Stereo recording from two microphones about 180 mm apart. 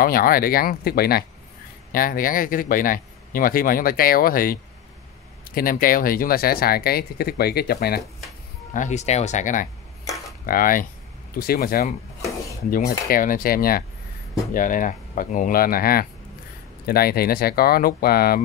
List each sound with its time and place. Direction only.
0.0 s a man's voice: 55° left (ahead or behind)
8.7 s a man's voice: 40° left (ahead or behind); by 18.4 s 55° left (ahead or behind)